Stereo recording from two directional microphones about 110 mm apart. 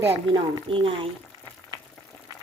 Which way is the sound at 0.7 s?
55° right (ahead or behind).